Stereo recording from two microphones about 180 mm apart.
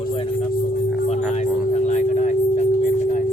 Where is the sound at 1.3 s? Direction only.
40° left (ahead or behind).